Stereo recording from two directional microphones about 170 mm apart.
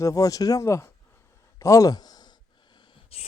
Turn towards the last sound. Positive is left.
turn(degrees=35)  # may be behind; listen again after turning